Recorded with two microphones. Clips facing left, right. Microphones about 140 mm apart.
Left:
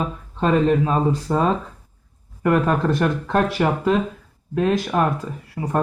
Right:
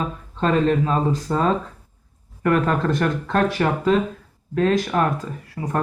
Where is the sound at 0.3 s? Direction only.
10° left (ahead or behind).